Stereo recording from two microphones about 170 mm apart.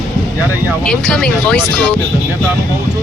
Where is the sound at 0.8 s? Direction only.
5° left (ahead or behind).